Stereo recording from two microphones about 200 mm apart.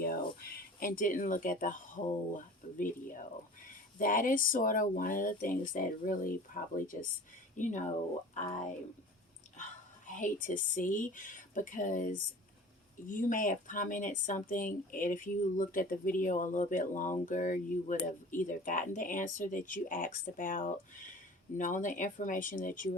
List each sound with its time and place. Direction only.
0.0 s a sound: 50° left (ahead or behind)
2.3 s speech: 40° left (ahead or behind)
10.2 s speech: 40° left (ahead or behind)